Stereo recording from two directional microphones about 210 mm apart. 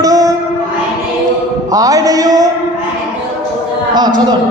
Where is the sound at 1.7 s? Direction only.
15° right (ahead or behind).